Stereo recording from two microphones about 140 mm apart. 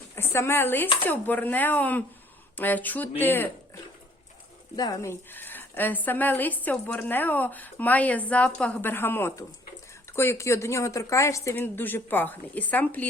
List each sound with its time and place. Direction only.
0.2 s a woman's voice: 15° left (ahead or behind)
4.8 s a woman's voice: 25° left (ahead or behind)